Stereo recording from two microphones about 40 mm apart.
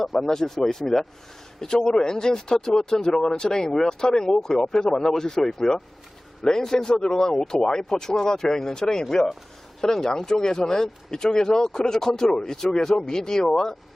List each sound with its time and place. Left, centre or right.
0.0 s speech: centre